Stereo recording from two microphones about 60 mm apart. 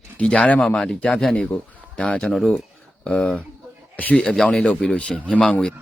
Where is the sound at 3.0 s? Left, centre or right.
Centre.